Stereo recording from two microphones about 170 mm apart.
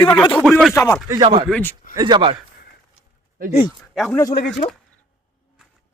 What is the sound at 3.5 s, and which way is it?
Speech, 30° left (ahead or behind).